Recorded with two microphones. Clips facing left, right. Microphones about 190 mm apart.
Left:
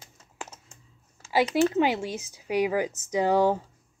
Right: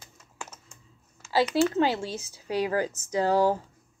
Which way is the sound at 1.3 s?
15° left (ahead or behind).